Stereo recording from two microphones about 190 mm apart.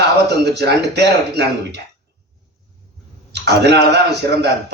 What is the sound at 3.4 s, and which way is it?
A man's voice, 65° right (ahead or behind).